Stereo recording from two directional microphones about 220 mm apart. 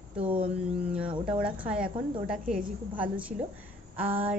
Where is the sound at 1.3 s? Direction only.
5° right (ahead or behind).